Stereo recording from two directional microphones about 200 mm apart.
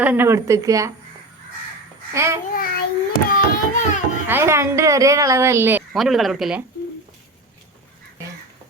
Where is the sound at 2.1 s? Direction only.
15° right (ahead or behind).